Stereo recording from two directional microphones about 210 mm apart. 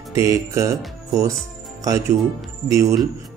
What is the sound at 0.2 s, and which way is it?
A man's voice, 15° right (ahead or behind).